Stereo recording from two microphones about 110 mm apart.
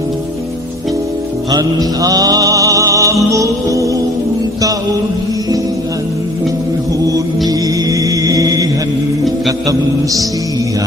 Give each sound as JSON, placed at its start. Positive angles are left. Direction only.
{"t": 1.5, "sound": "music", "side_deg": -35}
{"t": 7.0, "sound": "mantra", "side_deg": -35}